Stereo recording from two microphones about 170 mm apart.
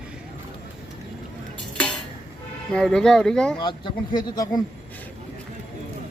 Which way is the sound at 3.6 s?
30° left (ahead or behind).